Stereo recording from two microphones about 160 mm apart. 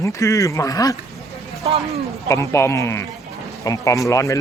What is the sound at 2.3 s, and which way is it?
A man's voice, 20° left (ahead or behind).